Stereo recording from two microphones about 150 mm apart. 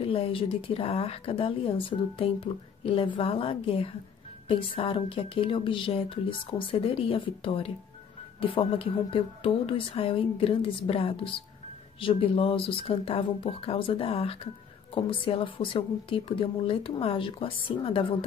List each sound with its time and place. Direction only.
0.0 s a woman's voice: 40° left (ahead or behind)